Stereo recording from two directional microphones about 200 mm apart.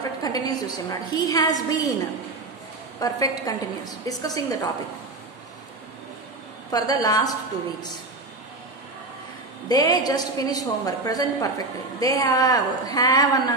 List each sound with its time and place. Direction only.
0.2 s a woman's voice: 20° left (ahead or behind)
6.7 s a woman's voice: 20° left (ahead or behind)
9.7 s a woman's voice: 20° left (ahead or behind)